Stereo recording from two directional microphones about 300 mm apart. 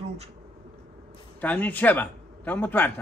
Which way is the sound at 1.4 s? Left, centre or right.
Centre.